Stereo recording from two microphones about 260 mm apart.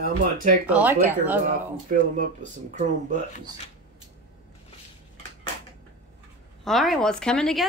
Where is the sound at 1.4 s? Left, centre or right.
Right.